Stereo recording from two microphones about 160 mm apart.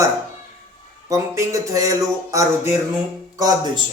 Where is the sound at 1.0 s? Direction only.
20° right (ahead or behind).